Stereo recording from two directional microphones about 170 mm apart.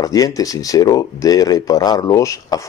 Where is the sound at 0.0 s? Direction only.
20° left (ahead or behind).